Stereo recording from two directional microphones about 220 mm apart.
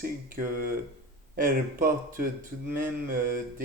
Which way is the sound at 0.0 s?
40° right (ahead or behind).